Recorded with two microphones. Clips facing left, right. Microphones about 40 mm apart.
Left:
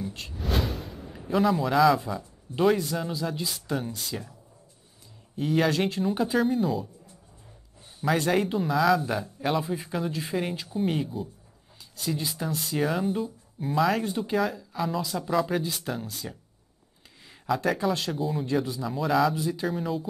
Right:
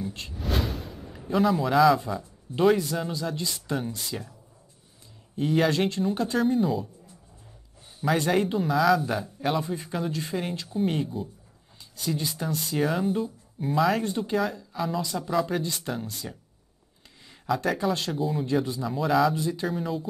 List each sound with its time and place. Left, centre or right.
0.0 s speech: centre
8.0 s speech: centre
17.5 s speech: centre